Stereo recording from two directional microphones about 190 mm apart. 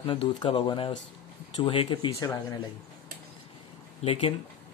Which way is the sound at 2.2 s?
15° left (ahead or behind).